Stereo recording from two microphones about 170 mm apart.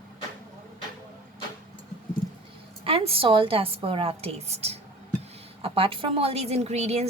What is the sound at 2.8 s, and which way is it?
A woman's voice, 35° right (ahead or behind).